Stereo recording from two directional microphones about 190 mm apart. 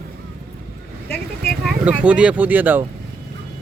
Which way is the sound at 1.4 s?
Centre (ahead or behind).